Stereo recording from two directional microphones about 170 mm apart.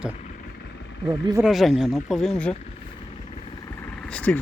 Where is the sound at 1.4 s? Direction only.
Centre (ahead or behind).